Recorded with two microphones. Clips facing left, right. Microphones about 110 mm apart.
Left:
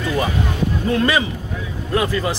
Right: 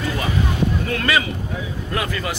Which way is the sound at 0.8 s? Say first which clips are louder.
Left 3 dB; 25° left (ahead or behind).